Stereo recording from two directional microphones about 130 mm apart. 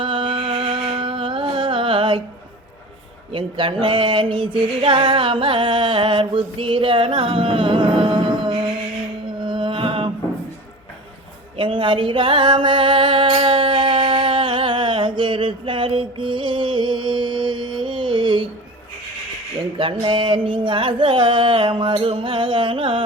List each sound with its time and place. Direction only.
0.0 s carnatic music: 40° right (ahead or behind)
3.3 s music: 40° right (ahead or behind)
11.5 s music: 40° right (ahead or behind)
19.8 s music: 40° right (ahead or behind)